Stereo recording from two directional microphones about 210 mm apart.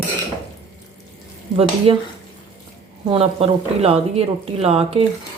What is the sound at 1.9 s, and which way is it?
Speech, 25° right (ahead or behind).